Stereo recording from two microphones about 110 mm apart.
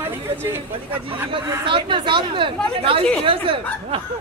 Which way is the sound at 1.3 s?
50° right (ahead or behind).